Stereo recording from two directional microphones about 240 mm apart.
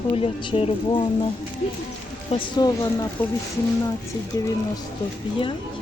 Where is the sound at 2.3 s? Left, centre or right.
Centre.